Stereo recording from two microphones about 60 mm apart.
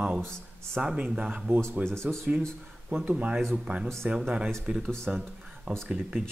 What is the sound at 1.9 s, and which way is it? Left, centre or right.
Speech, centre.